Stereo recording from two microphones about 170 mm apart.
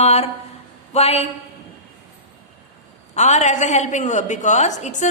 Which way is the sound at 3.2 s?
45° left (ahead or behind).